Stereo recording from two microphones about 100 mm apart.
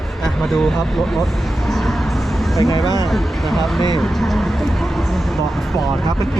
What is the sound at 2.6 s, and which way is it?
Speech, 40° left (ahead or behind).